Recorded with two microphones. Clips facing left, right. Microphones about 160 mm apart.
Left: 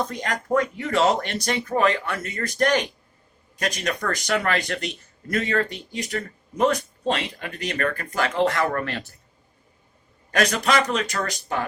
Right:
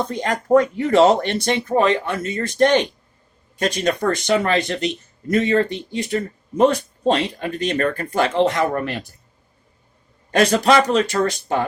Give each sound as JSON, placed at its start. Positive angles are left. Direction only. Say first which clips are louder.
{"t": 0.0, "sound": "speech", "louder": "right 4 dB", "side_deg": -30}
{"t": 10.3, "sound": "speech", "louder": "right 6 dB", "side_deg": -30}